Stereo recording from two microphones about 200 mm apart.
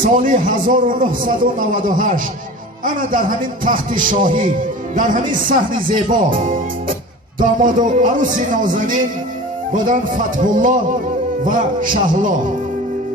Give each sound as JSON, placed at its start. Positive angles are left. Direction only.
{"t": 0.0, "sound": "a man's voice", "side_deg": -40}